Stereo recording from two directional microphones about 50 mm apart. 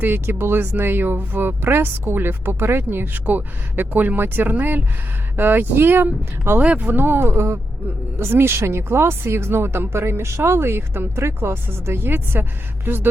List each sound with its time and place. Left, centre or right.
0.0 s speech: right
3.2 s speech: right